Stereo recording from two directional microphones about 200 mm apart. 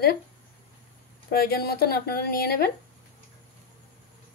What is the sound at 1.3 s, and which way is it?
Speech, 50° left (ahead or behind).